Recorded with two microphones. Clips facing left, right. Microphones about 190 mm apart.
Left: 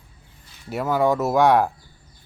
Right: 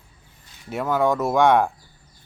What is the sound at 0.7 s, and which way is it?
Speech, 5° left (ahead or behind).